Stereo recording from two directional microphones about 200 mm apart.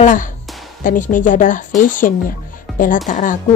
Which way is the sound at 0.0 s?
40° left (ahead or behind).